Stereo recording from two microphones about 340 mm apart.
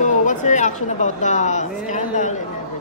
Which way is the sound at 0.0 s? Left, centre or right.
Left.